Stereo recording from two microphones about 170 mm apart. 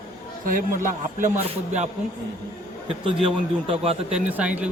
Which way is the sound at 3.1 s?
30° right (ahead or behind).